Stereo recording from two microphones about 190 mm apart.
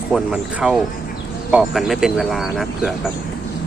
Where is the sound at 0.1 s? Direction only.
5° right (ahead or behind).